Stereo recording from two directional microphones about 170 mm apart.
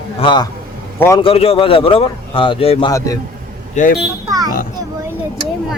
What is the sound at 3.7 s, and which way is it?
Speech, 50° left (ahead or behind).